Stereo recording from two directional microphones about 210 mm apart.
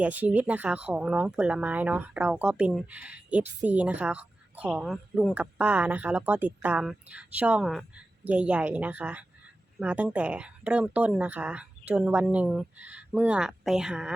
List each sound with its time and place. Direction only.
0.0 s a woman's voice: 5° right (ahead or behind)